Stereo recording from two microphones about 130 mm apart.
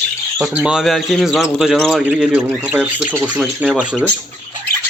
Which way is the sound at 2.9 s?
20° right (ahead or behind).